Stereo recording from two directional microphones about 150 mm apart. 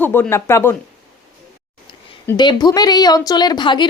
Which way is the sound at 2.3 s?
30° left (ahead or behind).